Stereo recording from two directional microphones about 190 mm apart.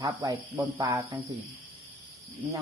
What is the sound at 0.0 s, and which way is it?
Speech, 25° right (ahead or behind).